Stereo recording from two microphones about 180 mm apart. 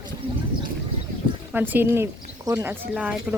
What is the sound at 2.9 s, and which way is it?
Speech, 5° right (ahead or behind).